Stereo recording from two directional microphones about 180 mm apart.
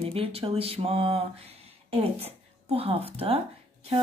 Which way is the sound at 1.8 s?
35° right (ahead or behind).